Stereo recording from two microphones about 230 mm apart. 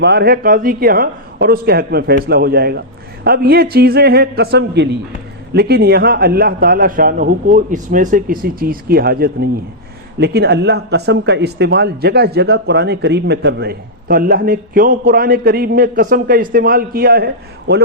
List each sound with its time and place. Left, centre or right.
0.0 s a man's voice: right